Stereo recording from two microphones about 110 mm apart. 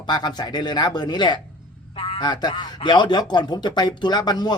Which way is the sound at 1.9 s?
60° left (ahead or behind).